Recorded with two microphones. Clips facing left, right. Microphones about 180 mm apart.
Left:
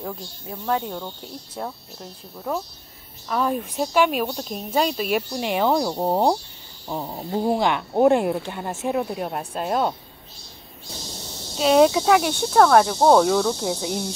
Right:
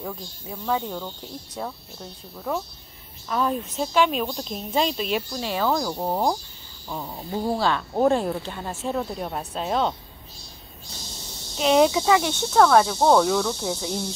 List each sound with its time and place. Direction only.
0.0 s speech: 5° left (ahead or behind)
3.3 s speech: 5° left (ahead or behind)
5.3 s speech: 20° left (ahead or behind)
11.9 s speech: 10° left (ahead or behind)